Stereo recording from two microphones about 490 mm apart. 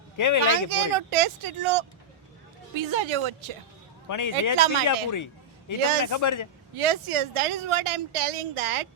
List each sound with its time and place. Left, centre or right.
0.2 s a man's voice: left
0.5 s speech: right
2.7 s speech: right
4.1 s a man's voice: left
4.5 s speech: right
5.1 s a sound: left
6.1 s a man's voice: left
6.7 s speech: right